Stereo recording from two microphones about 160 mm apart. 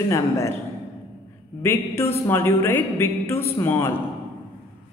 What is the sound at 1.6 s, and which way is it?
A woman's voice, 15° left (ahead or behind).